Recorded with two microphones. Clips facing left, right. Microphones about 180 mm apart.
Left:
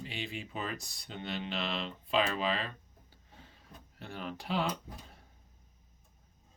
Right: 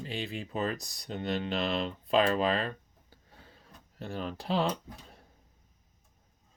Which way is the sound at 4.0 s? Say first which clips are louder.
Right 5 dB; 40° right (ahead or behind).